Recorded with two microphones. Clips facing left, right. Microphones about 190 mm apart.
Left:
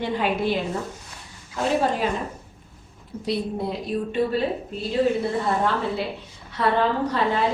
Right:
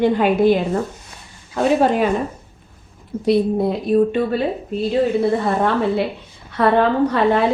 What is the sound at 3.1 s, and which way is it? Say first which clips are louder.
Speech: right 9 dB; 50° right (ahead or behind).